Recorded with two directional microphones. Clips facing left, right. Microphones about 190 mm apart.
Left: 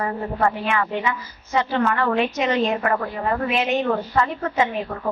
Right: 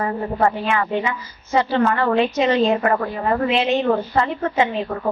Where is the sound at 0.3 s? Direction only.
30° right (ahead or behind).